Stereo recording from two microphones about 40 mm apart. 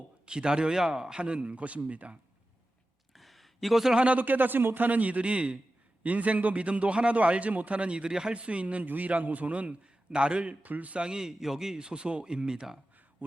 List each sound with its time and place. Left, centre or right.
0.3 s a man's voice: right
3.1 s a sound: centre
4.2 s a man's voice: right
11.0 s speech: centre